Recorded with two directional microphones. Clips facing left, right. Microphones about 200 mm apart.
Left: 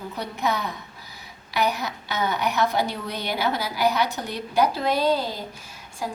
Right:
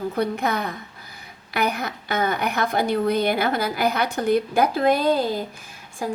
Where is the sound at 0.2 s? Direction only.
55° right (ahead or behind).